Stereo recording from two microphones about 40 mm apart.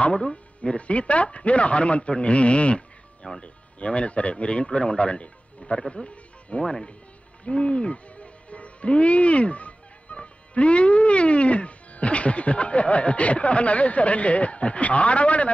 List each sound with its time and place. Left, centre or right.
0.1 s speech: left
5.6 s music: left
6.6 s speech: centre
7.4 s speech: left